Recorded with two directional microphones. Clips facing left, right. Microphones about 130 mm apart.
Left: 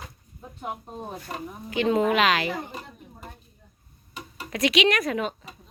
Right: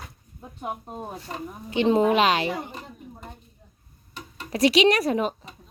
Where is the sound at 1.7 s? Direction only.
30° right (ahead or behind).